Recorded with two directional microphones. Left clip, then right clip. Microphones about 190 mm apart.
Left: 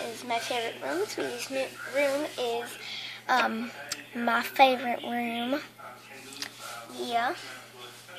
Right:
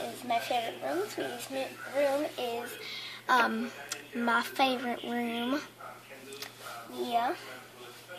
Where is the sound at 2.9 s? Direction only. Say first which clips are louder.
Left 1 dB; 5° right (ahead or behind).